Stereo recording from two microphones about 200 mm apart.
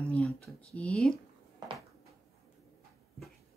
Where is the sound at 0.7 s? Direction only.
5° left (ahead or behind).